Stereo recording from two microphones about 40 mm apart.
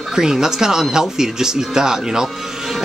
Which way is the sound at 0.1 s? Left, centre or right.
Centre.